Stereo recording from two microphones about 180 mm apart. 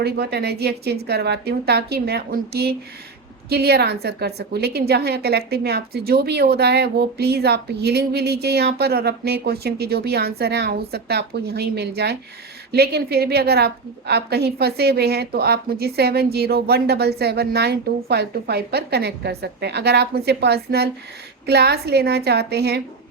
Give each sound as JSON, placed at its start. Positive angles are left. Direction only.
{"t": 0.0, "sound": "a woman's voice", "side_deg": -60}